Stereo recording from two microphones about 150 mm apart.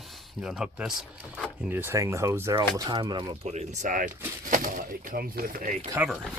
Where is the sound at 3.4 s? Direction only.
55° right (ahead or behind).